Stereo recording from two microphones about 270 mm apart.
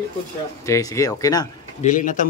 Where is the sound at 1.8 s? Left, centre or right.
Left.